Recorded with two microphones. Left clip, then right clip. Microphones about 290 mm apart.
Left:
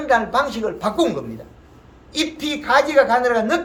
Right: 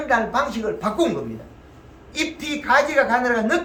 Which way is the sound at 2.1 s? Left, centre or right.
Centre.